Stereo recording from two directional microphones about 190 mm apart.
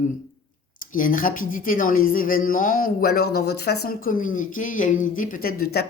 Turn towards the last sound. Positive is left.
turn(degrees=55)  # may be behind; listen again after turning